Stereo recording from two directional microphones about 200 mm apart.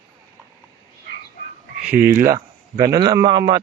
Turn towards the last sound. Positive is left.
turn(degrees=-20)  # may be behind; listen again after turning